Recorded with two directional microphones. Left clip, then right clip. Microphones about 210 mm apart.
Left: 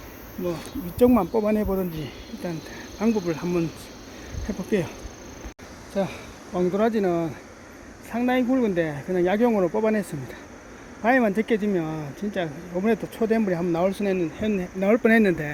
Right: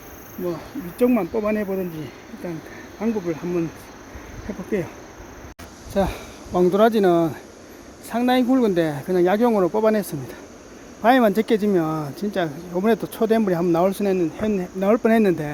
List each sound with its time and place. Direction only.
0.9 s speech: centre (ahead or behind)
5.9 s speech: 30° right (ahead or behind)
9.1 s speech: 15° right (ahead or behind)